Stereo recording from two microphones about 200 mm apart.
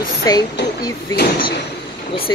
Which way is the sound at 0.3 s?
20° left (ahead or behind).